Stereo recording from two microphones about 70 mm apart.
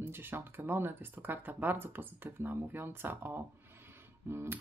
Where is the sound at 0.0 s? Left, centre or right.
Right.